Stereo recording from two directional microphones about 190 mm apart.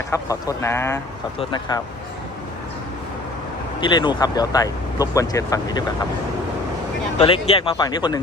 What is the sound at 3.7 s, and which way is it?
Speech, 25° left (ahead or behind).